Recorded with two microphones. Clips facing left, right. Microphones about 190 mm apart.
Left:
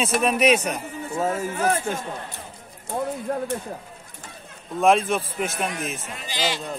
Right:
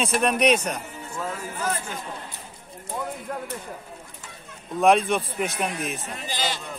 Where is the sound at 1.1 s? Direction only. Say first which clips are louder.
Left 7 dB; 50° left (ahead or behind).